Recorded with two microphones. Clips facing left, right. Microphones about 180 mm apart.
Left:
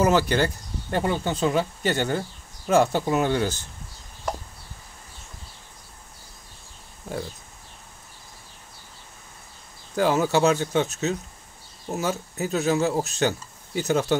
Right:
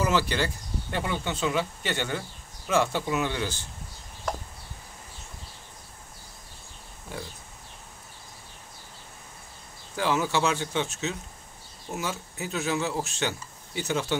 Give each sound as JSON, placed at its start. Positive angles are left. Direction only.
{"t": 0.0, "sound": "speech", "side_deg": 45}
{"t": 9.9, "sound": "speech", "side_deg": 45}